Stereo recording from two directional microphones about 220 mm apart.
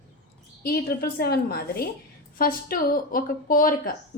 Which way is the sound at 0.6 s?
45° left (ahead or behind).